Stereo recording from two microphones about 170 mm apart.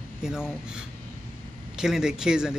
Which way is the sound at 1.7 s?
5° right (ahead or behind).